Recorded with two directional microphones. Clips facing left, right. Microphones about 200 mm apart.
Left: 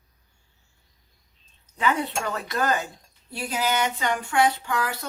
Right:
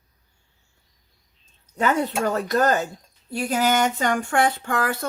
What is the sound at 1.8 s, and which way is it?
Speech, 45° right (ahead or behind).